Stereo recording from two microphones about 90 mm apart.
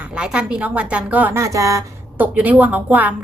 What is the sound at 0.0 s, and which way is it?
A woman's voice, 10° right (ahead or behind).